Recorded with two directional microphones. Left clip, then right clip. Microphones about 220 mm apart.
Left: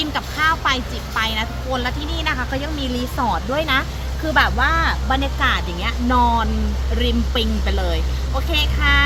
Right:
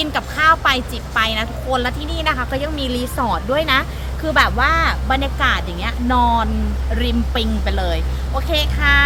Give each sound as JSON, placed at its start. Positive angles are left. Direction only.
{"t": 0.0, "sound": "speech", "side_deg": -55}
{"t": 3.2, "sound": "speech", "side_deg": -20}